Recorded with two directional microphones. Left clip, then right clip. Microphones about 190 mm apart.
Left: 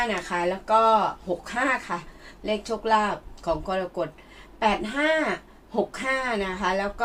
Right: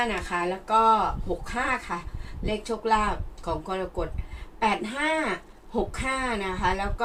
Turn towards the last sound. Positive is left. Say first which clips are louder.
# left 1 dB
turn(degrees=35)  # may be behind; listen again after turning